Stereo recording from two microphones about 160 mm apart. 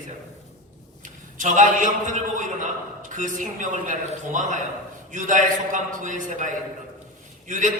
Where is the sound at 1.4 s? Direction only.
50° right (ahead or behind).